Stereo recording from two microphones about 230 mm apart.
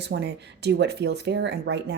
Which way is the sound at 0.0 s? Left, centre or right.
Right.